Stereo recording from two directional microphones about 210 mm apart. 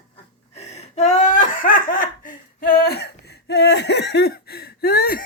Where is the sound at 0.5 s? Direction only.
30° left (ahead or behind).